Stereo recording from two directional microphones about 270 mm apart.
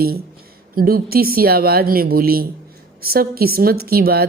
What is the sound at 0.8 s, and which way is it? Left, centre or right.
Speech, right.